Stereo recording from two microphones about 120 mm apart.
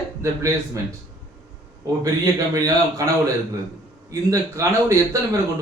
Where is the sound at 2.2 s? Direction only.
30° right (ahead or behind).